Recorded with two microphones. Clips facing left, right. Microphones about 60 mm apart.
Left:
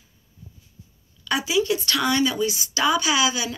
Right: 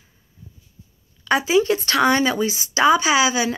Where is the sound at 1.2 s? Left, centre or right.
Right.